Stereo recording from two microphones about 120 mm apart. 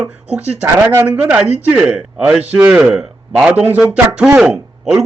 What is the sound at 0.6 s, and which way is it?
Speech, 20° right (ahead or behind).